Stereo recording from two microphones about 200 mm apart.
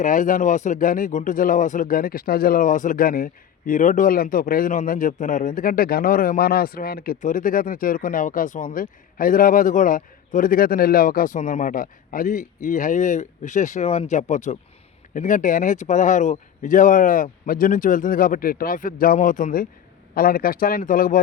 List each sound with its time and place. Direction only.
0.0 s a man's voice: 40° left (ahead or behind)